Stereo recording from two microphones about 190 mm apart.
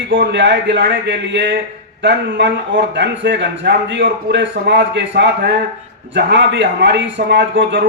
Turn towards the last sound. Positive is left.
turn(degrees=-70)  # may be behind; listen again after turning